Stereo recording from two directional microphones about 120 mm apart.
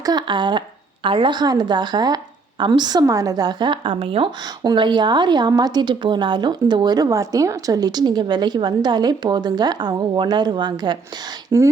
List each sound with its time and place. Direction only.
0.0 s speech: 35° right (ahead or behind)
11.4 s speech: 25° right (ahead or behind)